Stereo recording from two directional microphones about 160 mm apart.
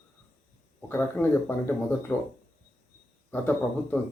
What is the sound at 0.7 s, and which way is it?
Speech, 15° left (ahead or behind).